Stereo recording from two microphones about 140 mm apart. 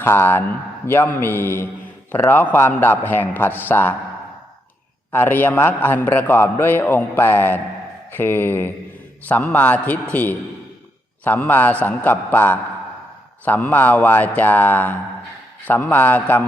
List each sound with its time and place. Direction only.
0.0 s a man's voice: 15° left (ahead or behind)
5.1 s a man's voice: 15° left (ahead or behind)